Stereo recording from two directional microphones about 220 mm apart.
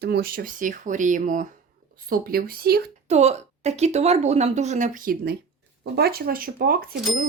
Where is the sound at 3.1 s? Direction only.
30° right (ahead or behind).